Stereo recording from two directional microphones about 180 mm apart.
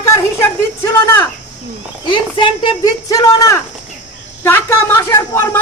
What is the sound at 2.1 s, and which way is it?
Speech, 30° left (ahead or behind).